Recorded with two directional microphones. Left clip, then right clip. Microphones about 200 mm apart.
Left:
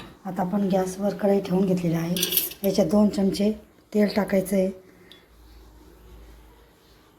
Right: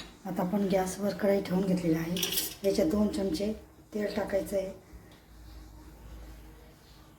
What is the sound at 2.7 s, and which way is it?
Speech, 25° left (ahead or behind).